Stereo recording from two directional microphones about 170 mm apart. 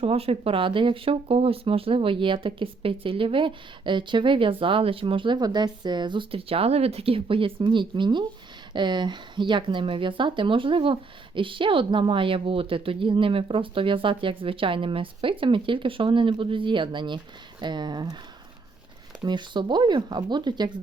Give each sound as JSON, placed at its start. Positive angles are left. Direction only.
{"t": 0.0, "sound": "speech", "side_deg": -35}
{"t": 19.2, "sound": "speech", "side_deg": -25}